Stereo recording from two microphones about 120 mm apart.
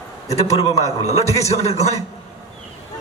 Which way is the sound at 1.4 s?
65° left (ahead or behind).